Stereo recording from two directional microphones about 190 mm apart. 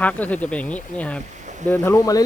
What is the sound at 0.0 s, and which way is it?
Speech, 10° left (ahead or behind).